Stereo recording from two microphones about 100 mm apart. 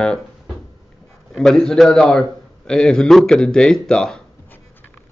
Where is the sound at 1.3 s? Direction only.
5° left (ahead or behind).